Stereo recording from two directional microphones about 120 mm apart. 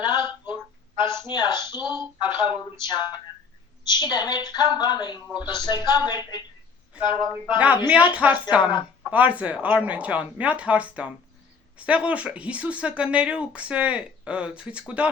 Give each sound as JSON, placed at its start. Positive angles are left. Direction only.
{"t": 0.0, "sound": "a sound", "side_deg": 40}
{"t": 1.3, "sound": "a woman's voice", "side_deg": 35}
{"t": 7.9, "sound": "speech", "side_deg": -10}